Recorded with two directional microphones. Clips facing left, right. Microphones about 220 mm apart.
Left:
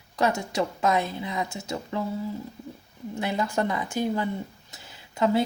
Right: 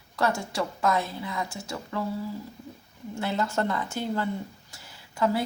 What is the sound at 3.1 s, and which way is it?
Speech, 15° left (ahead or behind).